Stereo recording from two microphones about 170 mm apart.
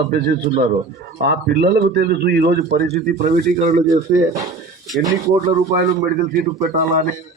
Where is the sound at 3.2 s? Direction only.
50° right (ahead or behind).